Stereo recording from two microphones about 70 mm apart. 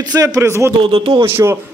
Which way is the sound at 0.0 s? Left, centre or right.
Right.